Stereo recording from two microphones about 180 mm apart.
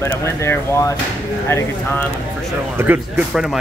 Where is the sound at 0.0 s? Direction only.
15° left (ahead or behind).